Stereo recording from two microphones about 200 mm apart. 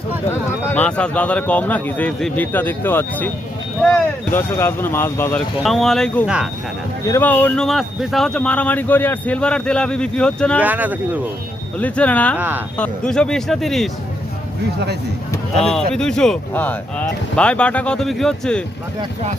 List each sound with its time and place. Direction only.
0.3 s speech: 10° left (ahead or behind)
4.3 s speech: 10° left (ahead or behind)
5.5 s speech: centre (ahead or behind)
7.1 s speech: 10° left (ahead or behind)
10.6 s speech: 10° right (ahead or behind)
11.8 s speech: 5° left (ahead or behind)
12.4 s speech: 10° right (ahead or behind)
12.7 s speech: 5° left (ahead or behind)
15.5 s speech: centre (ahead or behind)